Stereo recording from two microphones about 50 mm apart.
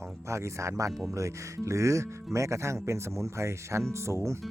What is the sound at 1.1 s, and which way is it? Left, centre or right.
Speech, right.